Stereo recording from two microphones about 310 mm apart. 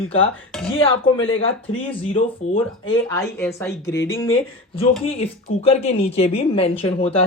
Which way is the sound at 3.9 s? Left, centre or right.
Left.